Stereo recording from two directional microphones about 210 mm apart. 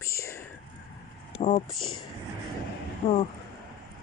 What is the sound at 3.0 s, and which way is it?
Speech, 30° left (ahead or behind).